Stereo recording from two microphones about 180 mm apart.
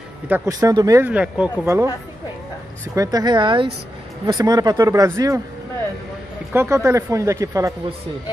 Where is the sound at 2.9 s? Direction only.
20° right (ahead or behind).